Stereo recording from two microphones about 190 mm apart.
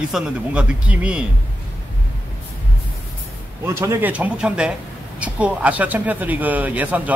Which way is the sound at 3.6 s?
15° right (ahead or behind).